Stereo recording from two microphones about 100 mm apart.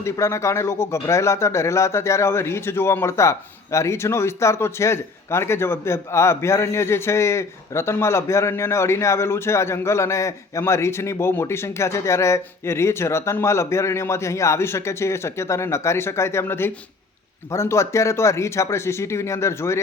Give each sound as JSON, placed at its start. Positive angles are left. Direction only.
{"t": 0.0, "sound": "a man's voice", "side_deg": 30}